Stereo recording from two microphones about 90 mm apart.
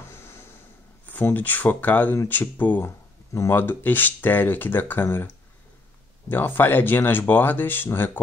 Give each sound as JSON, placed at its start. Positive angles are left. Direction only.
{"t": 1.0, "sound": "speech", "side_deg": 20}
{"t": 6.2, "sound": "speech", "side_deg": 20}